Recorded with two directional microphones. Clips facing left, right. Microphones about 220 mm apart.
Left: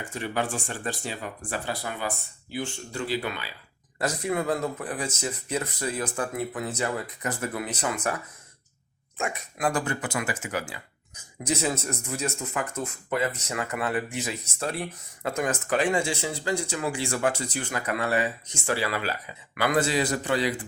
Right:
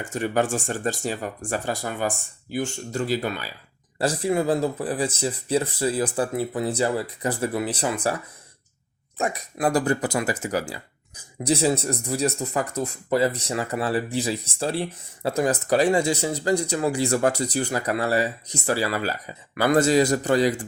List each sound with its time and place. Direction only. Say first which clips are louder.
0.0 s speech: right 6 dB; 45° right (ahead or behind)
9.1 s speech: right 5 dB; 35° right (ahead or behind)